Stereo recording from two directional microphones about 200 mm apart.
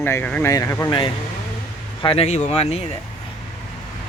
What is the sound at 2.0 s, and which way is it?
Speech, 30° left (ahead or behind).